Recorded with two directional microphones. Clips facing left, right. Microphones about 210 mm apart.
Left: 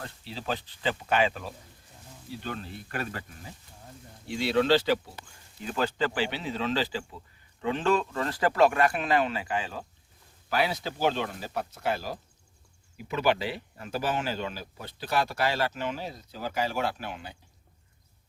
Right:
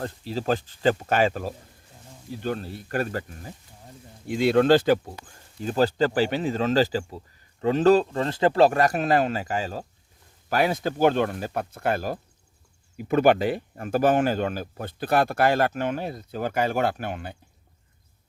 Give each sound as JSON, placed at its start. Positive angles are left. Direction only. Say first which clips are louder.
{"t": 0.0, "sound": "speech", "louder": "right 9 dB", "side_deg": -45}